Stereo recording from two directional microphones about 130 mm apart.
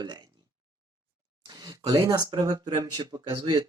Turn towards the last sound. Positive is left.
turn(degrees=-35)  # may be behind; listen again after turning